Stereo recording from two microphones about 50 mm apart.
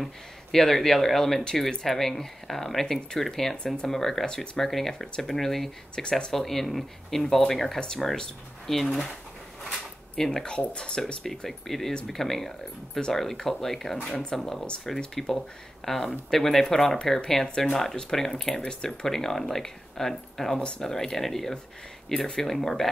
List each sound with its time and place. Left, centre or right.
0.0 s speech: centre
10.1 s speech: centre
10.4 s speech: centre
11.2 s speech: centre